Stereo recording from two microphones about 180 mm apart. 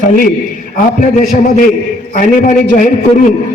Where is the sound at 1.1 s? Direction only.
45° left (ahead or behind).